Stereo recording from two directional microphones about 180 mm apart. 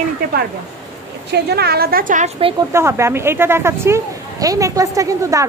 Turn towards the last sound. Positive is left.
turn(degrees=-20)  # may be behind; listen again after turning